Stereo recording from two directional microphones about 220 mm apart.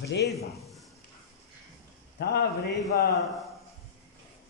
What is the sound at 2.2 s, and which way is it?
Speech, 45° left (ahead or behind).